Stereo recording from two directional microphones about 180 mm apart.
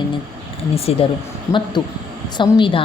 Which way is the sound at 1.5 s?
15° left (ahead or behind).